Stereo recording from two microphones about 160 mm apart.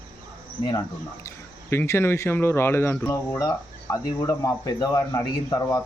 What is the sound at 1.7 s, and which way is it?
Speech, 15° left (ahead or behind).